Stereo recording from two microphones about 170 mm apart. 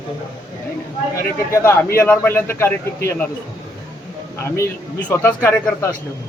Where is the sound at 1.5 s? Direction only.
15° left (ahead or behind).